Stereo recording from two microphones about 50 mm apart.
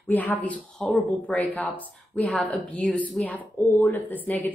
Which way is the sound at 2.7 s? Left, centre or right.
Left.